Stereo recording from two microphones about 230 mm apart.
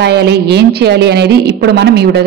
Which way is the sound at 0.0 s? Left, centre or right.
Right.